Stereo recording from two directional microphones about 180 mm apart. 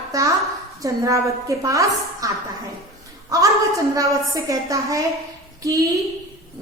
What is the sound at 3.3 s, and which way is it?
A woman's voice, 20° right (ahead or behind).